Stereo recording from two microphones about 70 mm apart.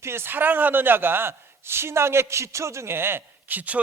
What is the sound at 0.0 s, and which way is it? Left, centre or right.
A man's voice, right.